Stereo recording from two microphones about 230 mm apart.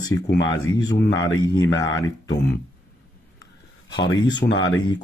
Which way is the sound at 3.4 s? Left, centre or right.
Left.